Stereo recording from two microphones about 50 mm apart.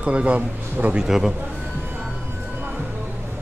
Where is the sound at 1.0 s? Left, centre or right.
Centre.